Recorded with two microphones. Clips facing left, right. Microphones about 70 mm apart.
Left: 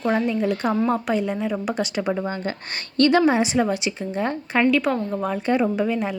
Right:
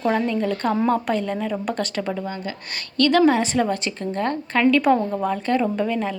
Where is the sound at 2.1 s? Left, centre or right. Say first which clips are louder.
Left 2 dB; left.